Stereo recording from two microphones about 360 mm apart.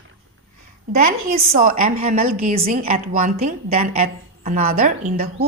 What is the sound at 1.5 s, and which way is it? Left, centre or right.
A woman's voice, right.